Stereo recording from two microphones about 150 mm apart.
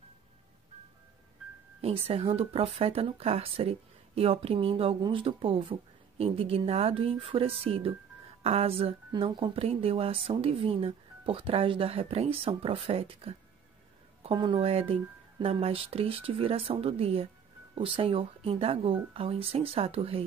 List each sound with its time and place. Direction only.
1.8 s speech: 40° right (ahead or behind)